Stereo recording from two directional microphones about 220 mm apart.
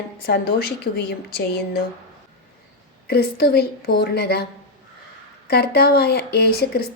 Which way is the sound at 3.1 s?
45° left (ahead or behind).